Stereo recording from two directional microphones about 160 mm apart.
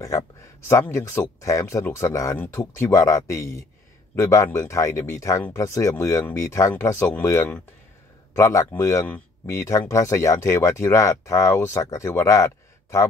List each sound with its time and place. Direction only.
0.0 s speech: 20° left (ahead or behind)